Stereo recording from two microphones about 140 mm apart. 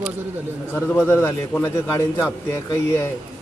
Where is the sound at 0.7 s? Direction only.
10° left (ahead or behind).